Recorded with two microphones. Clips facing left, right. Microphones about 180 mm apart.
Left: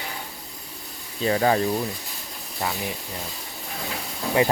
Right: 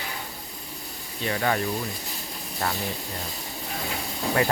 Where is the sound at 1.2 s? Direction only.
30° left (ahead or behind).